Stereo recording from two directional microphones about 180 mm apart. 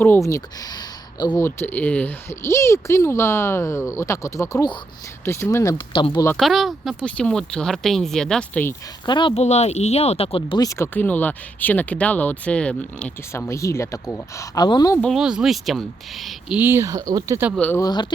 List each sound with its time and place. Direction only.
0.0 s speech: 15° left (ahead or behind)
1.5 s speech: 10° left (ahead or behind)
6.2 s speech: centre (ahead or behind)
9.0 s speech: 25° left (ahead or behind)
15.0 s speech: 5° right (ahead or behind)
17.6 s speech: 15° left (ahead or behind)